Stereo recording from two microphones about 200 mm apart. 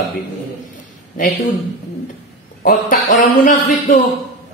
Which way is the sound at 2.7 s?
40° left (ahead or behind).